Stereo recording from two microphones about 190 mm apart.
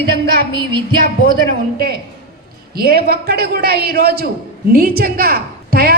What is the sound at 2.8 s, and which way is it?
A woman's voice, 55° right (ahead or behind).